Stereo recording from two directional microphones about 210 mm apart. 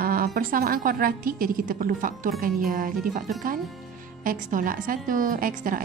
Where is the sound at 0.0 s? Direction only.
45° right (ahead or behind).